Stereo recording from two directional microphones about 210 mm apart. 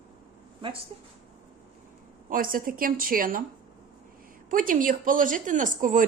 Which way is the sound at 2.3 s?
40° right (ahead or behind).